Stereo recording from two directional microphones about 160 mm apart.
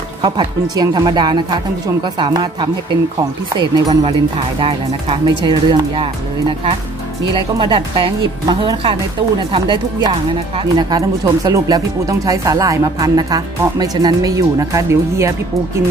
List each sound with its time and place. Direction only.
0.2 s speech: 25° right (ahead or behind)
7.3 s speech: 30° right (ahead or behind)